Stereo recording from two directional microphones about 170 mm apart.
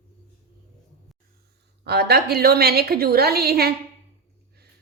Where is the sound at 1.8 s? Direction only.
70° right (ahead or behind).